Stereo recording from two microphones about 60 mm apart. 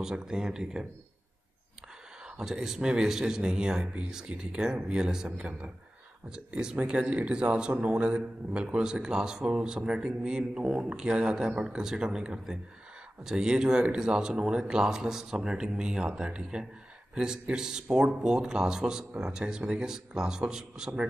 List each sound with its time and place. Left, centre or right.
0.0 s speech: centre
2.2 s speech: centre